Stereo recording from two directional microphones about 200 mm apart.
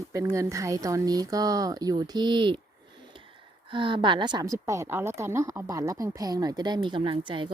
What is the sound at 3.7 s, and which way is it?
A woman's voice, 25° right (ahead or behind).